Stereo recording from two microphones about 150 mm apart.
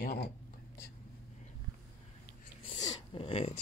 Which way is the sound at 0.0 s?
90° left.